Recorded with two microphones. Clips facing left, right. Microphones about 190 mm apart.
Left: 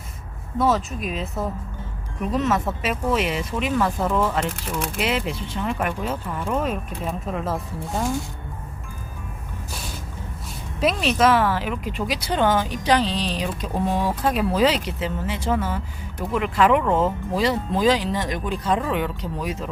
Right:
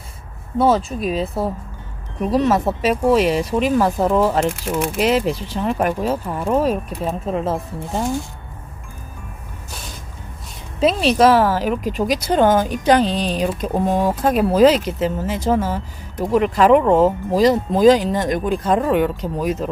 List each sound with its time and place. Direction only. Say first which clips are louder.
0.6 s speech: right 5 dB; 30° right (ahead or behind)
10.8 s speech: right 5 dB; 30° right (ahead or behind)